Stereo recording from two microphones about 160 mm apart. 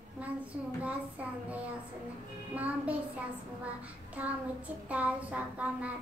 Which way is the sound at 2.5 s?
10° right (ahead or behind).